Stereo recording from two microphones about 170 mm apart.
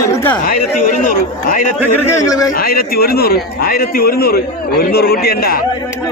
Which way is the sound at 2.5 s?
60° left (ahead or behind).